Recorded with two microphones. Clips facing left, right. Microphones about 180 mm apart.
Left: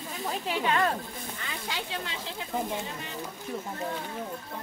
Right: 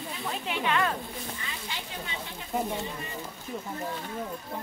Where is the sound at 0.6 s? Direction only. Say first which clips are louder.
Left 1 dB; 35° left (ahead or behind).